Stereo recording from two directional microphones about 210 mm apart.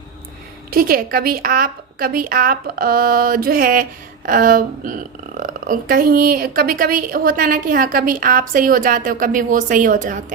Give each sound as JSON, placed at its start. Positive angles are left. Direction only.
{"t": 0.7, "sound": "a woman's voice", "side_deg": -45}